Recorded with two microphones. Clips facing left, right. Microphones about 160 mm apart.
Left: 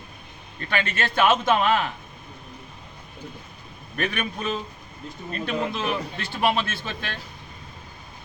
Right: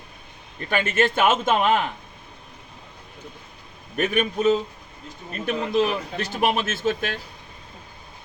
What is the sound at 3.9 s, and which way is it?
Speech, 20° right (ahead or behind).